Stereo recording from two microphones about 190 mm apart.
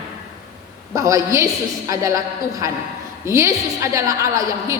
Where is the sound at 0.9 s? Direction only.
15° right (ahead or behind).